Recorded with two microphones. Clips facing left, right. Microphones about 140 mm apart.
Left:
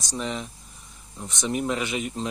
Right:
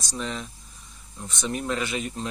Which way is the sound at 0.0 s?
15° left (ahead or behind).